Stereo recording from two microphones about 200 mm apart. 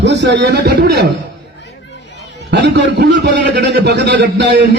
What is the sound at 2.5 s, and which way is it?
A man's voice, 60° right (ahead or behind).